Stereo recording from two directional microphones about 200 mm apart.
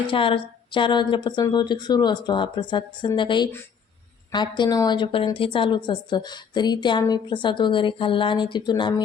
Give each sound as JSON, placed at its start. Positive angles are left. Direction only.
{"t": 0.1, "sound": "a woman's voice", "side_deg": 25}